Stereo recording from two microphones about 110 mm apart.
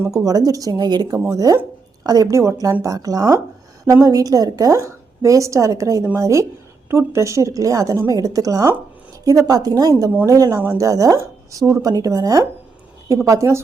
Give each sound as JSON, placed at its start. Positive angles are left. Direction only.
{"t": 0.0, "sound": "a woman's voice", "side_deg": -30}